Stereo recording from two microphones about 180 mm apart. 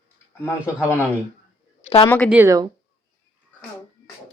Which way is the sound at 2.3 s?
15° right (ahead or behind).